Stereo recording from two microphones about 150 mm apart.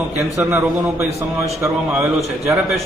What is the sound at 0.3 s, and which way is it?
Speech, 15° right (ahead or behind).